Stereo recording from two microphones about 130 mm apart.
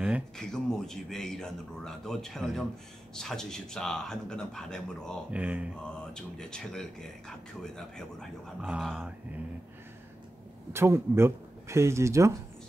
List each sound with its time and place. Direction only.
0.4 s speech: 5° left (ahead or behind)
5.3 s speech: 10° right (ahead or behind)
6.1 s speech: 5° left (ahead or behind)
8.5 s speech: 10° right (ahead or behind)
10.7 s speech: 20° right (ahead or behind)